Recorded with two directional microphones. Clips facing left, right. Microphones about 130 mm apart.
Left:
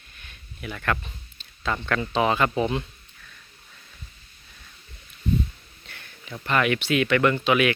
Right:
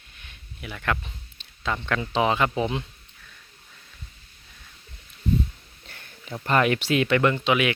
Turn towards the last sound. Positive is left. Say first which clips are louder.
# left 1 dB
turn(degrees=-20)  # may be behind; listen again after turning